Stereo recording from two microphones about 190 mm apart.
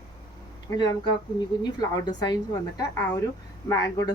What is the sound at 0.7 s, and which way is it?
Speech, 20° left (ahead or behind).